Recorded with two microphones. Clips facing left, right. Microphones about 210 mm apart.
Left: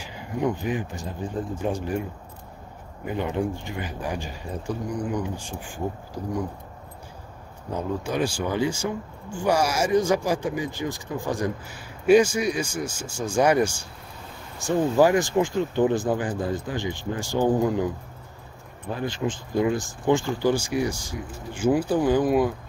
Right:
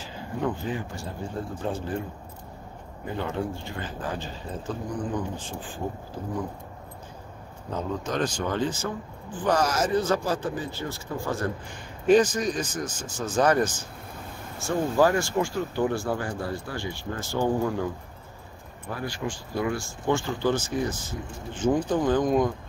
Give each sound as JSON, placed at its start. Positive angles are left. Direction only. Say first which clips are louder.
{"t": 0.0, "sound": "speech", "louder": "left 3 dB", "side_deg": 15}
{"t": 3.1, "sound": "speech", "louder": "left 3 dB", "side_deg": 15}
{"t": 7.7, "sound": "speech", "louder": "left 2 dB", "side_deg": 10}
{"t": 15.0, "sound": "speech", "louder": "left 3 dB", "side_deg": 15}
{"t": 18.9, "sound": "speech", "louder": "left 4 dB", "side_deg": 20}